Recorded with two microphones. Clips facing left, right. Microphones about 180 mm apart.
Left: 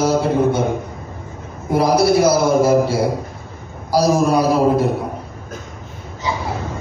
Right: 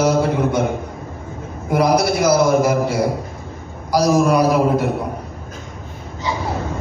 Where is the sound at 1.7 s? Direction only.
30° left (ahead or behind).